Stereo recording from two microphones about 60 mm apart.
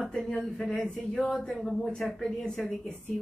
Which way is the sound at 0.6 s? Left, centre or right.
Centre.